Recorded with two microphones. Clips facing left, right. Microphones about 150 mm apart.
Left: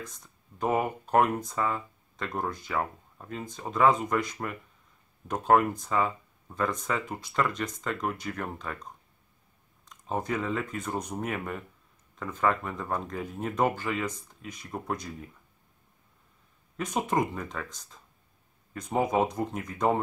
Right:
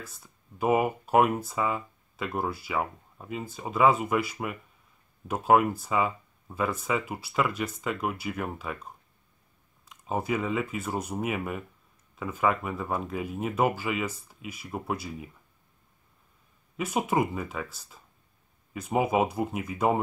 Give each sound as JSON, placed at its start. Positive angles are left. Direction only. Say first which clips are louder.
{"t": 0.0, "sound": "speech", "louder": "left 2 dB", "side_deg": -5}
{"t": 16.7, "sound": "speech", "louder": "right 1 dB", "side_deg": -5}